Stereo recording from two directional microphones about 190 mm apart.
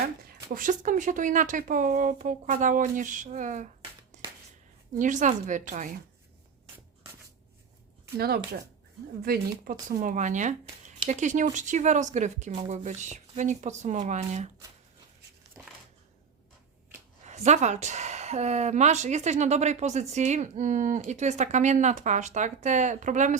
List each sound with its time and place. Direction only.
0.4 s speech: 45° right (ahead or behind)
4.1 s a sound: 40° right (ahead or behind)
4.9 s speech: 40° right (ahead or behind)
9.2 s speech: 50° right (ahead or behind); by 14.5 s 35° right (ahead or behind)
15.6 s a sound: 15° right (ahead or behind)
16.9 s speech: 35° right (ahead or behind)